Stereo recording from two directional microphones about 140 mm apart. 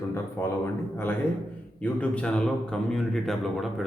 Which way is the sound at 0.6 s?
15° left (ahead or behind).